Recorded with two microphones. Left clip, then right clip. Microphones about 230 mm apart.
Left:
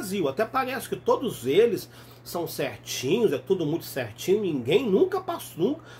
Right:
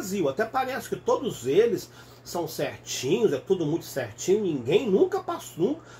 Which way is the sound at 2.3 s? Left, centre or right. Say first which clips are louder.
Even; left.